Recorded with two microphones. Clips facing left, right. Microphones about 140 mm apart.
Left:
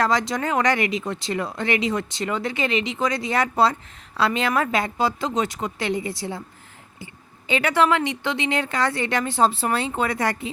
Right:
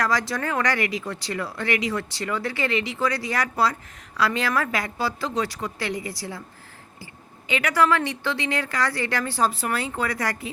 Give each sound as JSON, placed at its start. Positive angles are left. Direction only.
{"t": 0.0, "sound": "speech", "side_deg": 20}